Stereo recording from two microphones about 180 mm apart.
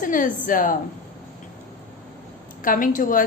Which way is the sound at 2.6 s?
50° left (ahead or behind).